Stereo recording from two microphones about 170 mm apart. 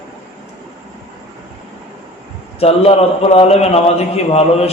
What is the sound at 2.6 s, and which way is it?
A man's voice, 35° left (ahead or behind).